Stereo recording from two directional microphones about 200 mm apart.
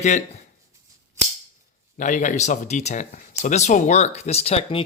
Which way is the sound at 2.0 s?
40° left (ahead or behind).